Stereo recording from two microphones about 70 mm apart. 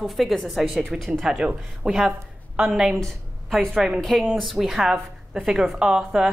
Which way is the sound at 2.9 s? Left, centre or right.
Centre.